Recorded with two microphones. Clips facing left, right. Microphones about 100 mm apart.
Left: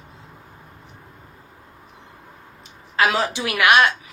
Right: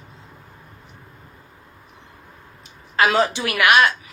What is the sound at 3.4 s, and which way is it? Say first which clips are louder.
Speech: left 3 dB; 20° left (ahead or behind).